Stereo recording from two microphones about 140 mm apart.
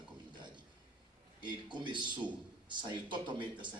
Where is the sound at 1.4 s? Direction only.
35° right (ahead or behind).